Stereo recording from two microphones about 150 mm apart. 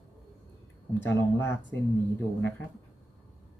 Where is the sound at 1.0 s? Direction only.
15° left (ahead or behind).